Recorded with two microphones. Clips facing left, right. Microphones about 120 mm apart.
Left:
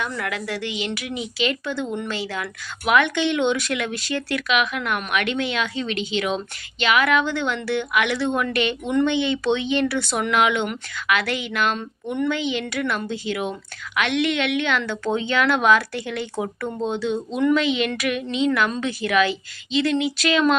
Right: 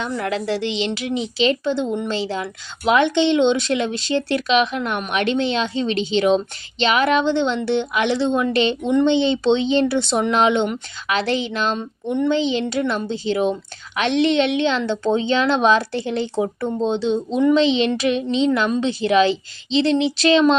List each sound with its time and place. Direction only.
0.0 s a woman's voice: 25° right (ahead or behind)